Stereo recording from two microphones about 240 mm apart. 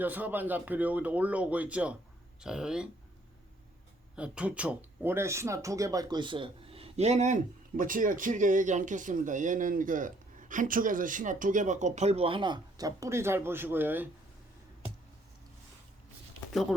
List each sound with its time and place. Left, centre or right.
0.0 s speech: centre
4.1 s speech: centre
16.5 s speech: centre